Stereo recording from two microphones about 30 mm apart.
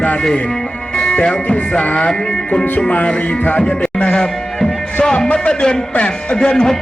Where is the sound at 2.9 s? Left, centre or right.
Left.